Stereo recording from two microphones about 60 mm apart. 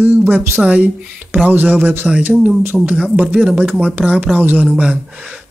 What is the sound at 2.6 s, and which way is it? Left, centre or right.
Speech, right.